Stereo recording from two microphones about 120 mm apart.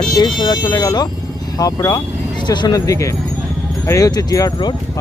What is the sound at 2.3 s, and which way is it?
Speech, 40° left (ahead or behind).